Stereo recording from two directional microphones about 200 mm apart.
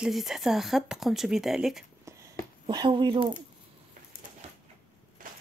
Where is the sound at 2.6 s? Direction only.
20° right (ahead or behind).